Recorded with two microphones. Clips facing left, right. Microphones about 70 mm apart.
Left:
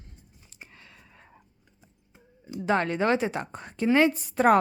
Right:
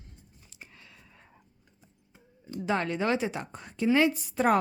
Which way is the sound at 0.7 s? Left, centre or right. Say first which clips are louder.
Left 2 dB; left.